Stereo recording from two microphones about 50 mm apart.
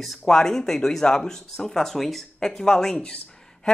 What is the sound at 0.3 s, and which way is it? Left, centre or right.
Speech, centre.